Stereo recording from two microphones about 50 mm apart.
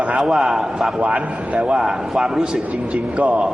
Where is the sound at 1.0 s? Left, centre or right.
Right.